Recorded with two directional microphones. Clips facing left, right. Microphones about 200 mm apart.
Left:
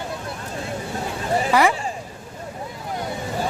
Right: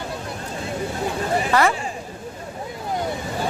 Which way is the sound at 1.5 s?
10° left (ahead or behind).